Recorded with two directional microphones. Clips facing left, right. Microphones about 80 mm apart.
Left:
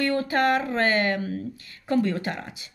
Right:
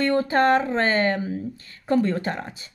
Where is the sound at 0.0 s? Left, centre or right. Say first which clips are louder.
Right 3 dB; right.